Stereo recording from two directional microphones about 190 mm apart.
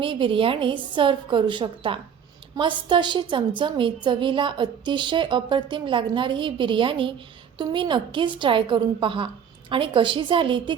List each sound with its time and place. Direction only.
0.0 s a woman's voice: 25° right (ahead or behind)